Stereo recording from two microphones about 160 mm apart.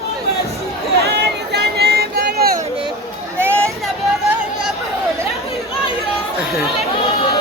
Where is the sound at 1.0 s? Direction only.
90° right; by 2.6 s 75° right (ahead or behind).